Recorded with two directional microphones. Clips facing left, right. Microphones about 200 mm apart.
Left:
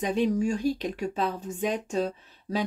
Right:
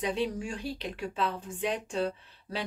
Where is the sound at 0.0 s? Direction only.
45° left (ahead or behind).